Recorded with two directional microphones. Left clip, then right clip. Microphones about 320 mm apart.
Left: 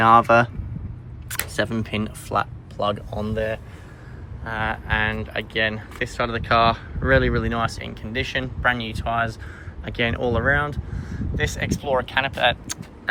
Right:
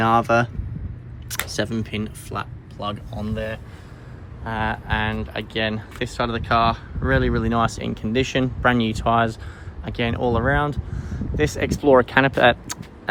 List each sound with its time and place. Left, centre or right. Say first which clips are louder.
0.0 s speech: left 4 dB; centre
4.4 s speech: even; centre